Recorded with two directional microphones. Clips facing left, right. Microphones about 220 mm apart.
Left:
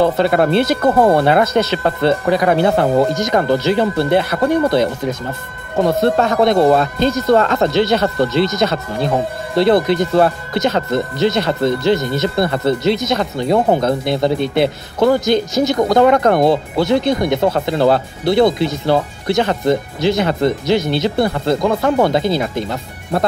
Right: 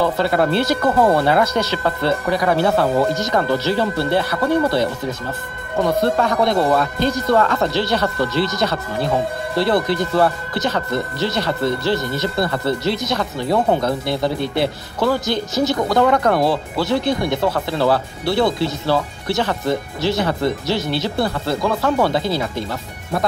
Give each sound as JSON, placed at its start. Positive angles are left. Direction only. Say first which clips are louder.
{"t": 0.0, "sound": "speech", "louder": "left 4 dB", "side_deg": 20}
{"t": 5.9, "sound": "speech", "louder": "left 3 dB", "side_deg": 25}